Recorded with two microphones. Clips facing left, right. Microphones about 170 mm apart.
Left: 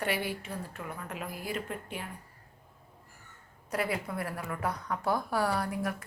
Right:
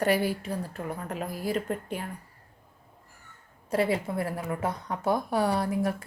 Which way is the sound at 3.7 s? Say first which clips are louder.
Right 6 dB; 30° right (ahead or behind).